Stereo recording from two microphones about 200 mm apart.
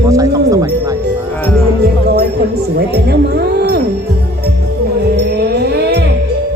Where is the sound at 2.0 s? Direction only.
55° right (ahead or behind).